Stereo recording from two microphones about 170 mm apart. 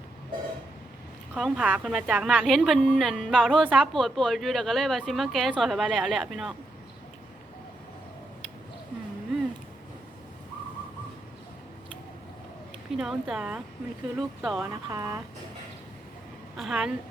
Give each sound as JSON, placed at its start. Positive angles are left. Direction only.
{"t": 1.4, "sound": "a woman's voice", "side_deg": -5}
{"t": 12.9, "sound": "a woman's voice", "side_deg": -5}
{"t": 14.6, "sound": "speech", "side_deg": -20}
{"t": 16.6, "sound": "a woman's voice", "side_deg": -5}